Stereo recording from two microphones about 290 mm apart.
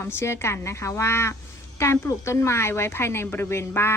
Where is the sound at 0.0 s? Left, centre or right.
Centre.